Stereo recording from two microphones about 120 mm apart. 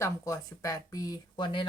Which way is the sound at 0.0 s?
25° left (ahead or behind).